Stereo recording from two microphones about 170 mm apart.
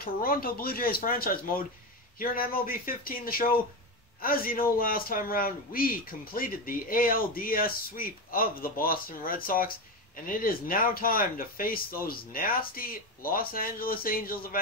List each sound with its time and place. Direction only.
0.0 s a man's voice: 60° left (ahead or behind)